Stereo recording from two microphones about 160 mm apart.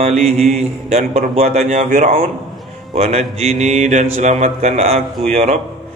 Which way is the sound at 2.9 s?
40° right (ahead or behind).